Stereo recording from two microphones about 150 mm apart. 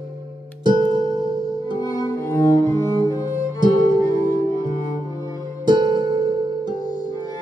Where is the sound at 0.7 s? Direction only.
30° right (ahead or behind).